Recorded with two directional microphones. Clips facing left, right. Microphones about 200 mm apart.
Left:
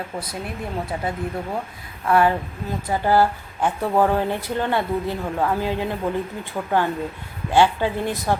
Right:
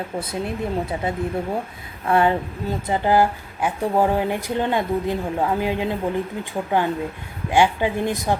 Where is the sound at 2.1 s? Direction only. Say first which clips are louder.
Even; 25° right (ahead or behind).